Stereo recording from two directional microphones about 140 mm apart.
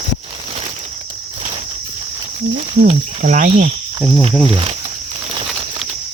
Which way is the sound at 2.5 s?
55° right (ahead or behind).